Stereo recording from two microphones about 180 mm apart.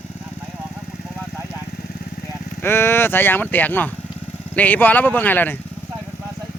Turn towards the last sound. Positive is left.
turn(degrees=10)  # may be behind; listen again after turning